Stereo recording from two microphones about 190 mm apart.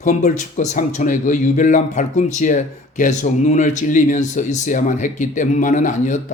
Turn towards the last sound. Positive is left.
turn(degrees=40)  # may be behind; listen again after turning